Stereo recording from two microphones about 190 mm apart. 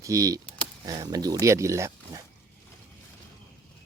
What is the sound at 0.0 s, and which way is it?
Speech, 15° right (ahead or behind).